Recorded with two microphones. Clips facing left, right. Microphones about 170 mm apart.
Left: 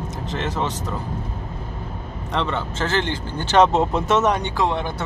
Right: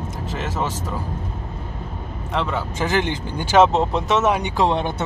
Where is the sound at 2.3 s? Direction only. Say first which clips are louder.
Even; 5° right (ahead or behind).